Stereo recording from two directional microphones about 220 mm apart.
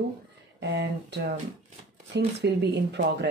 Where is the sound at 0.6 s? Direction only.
50° right (ahead or behind).